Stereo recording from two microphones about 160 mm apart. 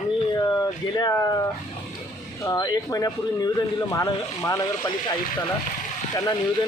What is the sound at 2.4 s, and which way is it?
Speech, 25° left (ahead or behind).